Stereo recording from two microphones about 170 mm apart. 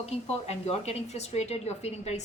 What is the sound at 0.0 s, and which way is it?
Speech, 40° left (ahead or behind).